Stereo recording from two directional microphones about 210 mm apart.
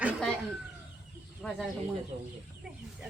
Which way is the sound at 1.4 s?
Centre (ahead or behind).